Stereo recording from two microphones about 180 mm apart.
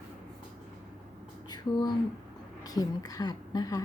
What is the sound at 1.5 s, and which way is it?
A woman's voice, 20° left (ahead or behind).